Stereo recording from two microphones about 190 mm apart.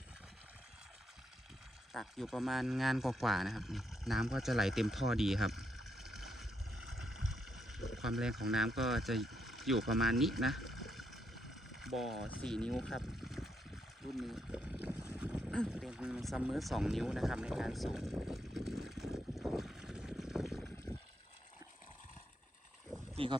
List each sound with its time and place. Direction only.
1.9 s speech: centre (ahead or behind)
7.5 s speech: centre (ahead or behind)
14.2 s boat: centre (ahead or behind)
15.5 s vehicle: centre (ahead or behind)
23.1 s speech: 30° right (ahead or behind)